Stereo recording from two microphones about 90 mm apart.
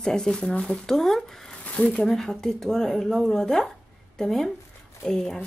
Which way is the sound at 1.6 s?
15° left (ahead or behind).